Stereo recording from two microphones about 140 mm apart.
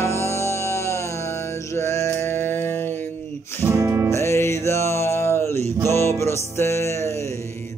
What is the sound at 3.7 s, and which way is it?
Music, 20° right (ahead or behind).